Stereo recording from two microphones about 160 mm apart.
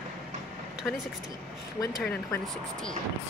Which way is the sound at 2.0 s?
5° left (ahead or behind).